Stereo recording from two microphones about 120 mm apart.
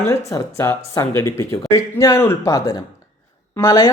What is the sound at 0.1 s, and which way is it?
Speech, 25° left (ahead or behind).